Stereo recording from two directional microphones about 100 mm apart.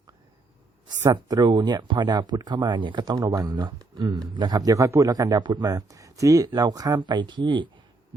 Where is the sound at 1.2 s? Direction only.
40° right (ahead or behind).